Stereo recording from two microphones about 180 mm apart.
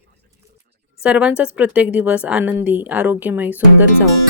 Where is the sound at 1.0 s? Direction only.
5° right (ahead or behind).